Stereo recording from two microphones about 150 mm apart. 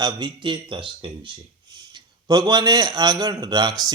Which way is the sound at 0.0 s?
30° right (ahead or behind).